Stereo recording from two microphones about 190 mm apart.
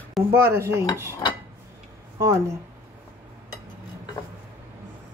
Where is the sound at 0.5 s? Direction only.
15° right (ahead or behind).